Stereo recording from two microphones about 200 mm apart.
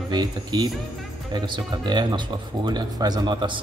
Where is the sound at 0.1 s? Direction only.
20° right (ahead or behind).